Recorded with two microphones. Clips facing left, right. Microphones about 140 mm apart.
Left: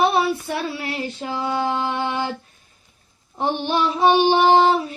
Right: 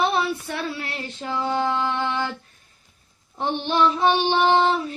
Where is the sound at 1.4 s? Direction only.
10° left (ahead or behind).